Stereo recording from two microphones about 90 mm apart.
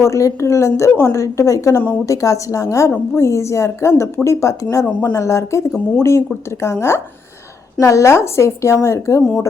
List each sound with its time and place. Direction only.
0.0 s a woman's voice: 35° left (ahead or behind)